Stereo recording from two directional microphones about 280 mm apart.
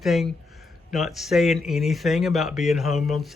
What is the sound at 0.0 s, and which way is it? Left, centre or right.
Speech, centre.